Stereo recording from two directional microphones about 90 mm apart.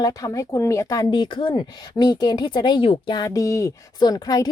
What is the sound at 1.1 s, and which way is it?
Speech, 60° left (ahead or behind).